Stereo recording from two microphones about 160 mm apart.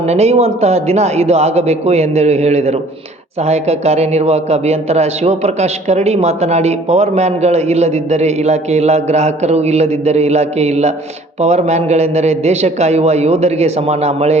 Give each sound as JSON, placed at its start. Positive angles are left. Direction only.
{"t": 0.1, "sound": "a man's voice", "side_deg": -40}